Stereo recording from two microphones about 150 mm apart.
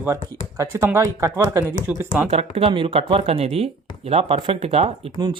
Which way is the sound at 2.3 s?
40° right (ahead or behind).